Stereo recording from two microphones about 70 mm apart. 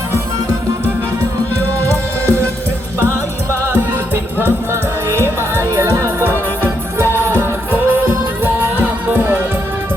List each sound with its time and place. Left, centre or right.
3.7 s music: right